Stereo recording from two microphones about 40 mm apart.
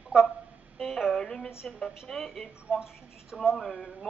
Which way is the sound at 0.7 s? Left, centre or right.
Centre.